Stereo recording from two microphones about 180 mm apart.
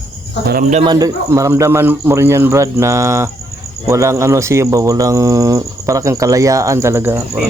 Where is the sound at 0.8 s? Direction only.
20° right (ahead or behind).